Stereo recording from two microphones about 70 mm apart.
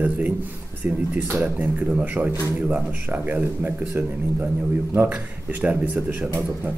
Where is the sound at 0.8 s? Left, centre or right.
Right.